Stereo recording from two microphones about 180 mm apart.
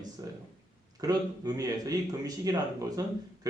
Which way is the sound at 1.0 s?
20° right (ahead or behind).